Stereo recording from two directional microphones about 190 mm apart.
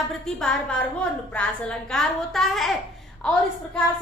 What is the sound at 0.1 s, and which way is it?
A woman's voice, 5° left (ahead or behind).